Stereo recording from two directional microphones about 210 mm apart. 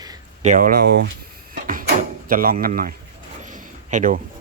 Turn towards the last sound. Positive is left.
turn(degrees=-40)  # may be behind; listen again after turning